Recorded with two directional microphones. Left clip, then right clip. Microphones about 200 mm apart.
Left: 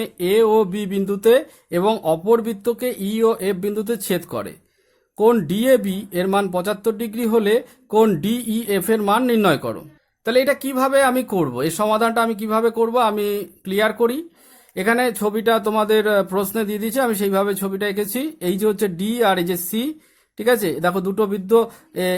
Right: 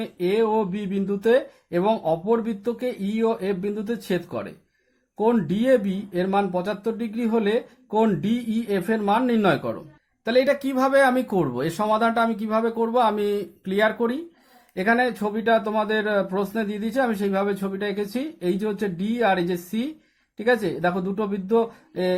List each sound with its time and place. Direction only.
0.0 s speech: 35° left (ahead or behind)